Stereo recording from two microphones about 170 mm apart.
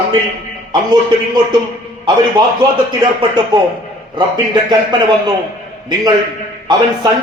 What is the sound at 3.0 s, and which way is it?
Speech, 25° right (ahead or behind).